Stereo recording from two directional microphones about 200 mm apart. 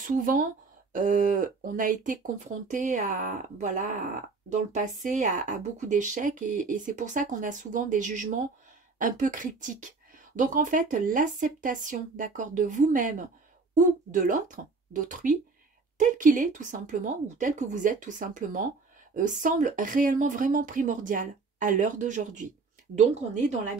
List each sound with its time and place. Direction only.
0.0 s speech: 40° right (ahead or behind)